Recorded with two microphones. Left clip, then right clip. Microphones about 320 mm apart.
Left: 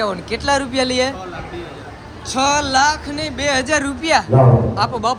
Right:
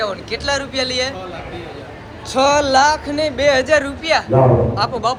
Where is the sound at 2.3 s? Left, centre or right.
Centre.